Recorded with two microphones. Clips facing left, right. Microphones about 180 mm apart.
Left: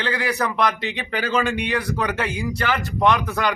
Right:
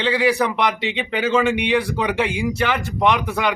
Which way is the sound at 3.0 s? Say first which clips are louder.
Even; 15° right (ahead or behind).